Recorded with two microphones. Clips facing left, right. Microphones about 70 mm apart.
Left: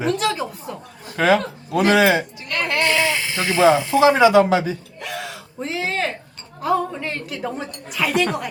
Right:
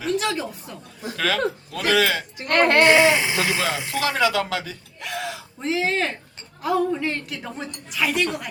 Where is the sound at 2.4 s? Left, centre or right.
Right.